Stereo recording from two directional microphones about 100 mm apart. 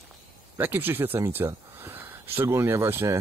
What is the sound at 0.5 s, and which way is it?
Speech, 20° right (ahead or behind).